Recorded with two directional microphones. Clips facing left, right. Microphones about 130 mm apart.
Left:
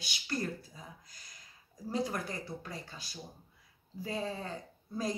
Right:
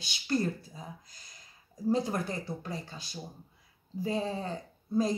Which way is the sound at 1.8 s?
25° right (ahead or behind).